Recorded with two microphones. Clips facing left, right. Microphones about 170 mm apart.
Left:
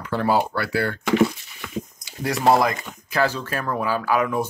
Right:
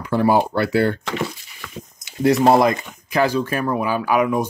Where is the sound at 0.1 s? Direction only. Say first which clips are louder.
Right 4 dB; 15° right (ahead or behind).